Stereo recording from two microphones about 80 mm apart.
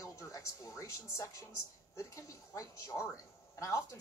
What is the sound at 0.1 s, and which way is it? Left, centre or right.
Music, left.